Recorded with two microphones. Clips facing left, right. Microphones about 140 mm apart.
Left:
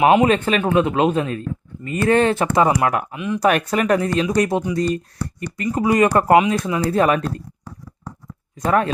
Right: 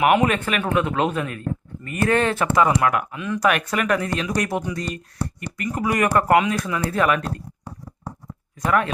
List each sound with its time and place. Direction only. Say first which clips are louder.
0.0 s speech: left 4 dB; 25° left (ahead or behind)
3.2 s speech: left 3 dB; 20° left (ahead or behind)
3.4 s speech: left 4 dB; 35° left (ahead or behind)
5.2 s speech: left 1 dB; 30° right (ahead or behind)
5.5 s speech: left 5 dB; 25° left (ahead or behind)
8.6 s speech: left 3 dB; 30° left (ahead or behind)